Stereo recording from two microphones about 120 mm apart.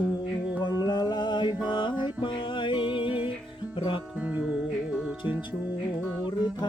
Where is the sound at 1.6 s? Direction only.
40° left (ahead or behind).